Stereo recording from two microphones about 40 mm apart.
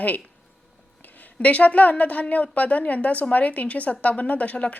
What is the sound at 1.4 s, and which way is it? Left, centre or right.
A woman's voice, left.